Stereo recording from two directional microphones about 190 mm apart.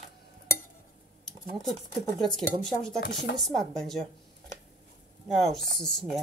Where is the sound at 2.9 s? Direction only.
60° left (ahead or behind).